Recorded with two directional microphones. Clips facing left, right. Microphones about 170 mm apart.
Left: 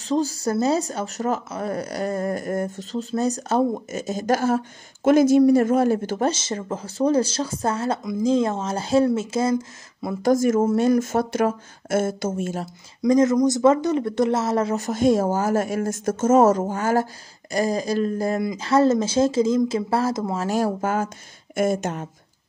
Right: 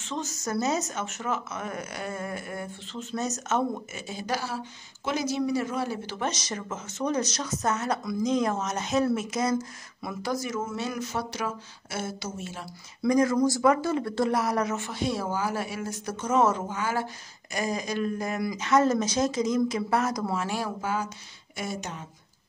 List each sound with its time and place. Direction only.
0.0 s speech: 35° left (ahead or behind)
6.2 s speech: 30° left (ahead or behind)
10.2 s speech: 50° left (ahead or behind)
13.0 s speech: 20° left (ahead or behind)
14.8 s speech: 45° left (ahead or behind); by 20.3 s 25° left (ahead or behind)
20.3 s speech: 40° left (ahead or behind)